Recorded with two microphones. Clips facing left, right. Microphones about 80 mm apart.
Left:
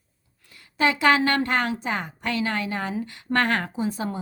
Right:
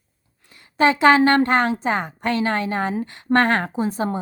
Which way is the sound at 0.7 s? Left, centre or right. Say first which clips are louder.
Right 5 dB; right.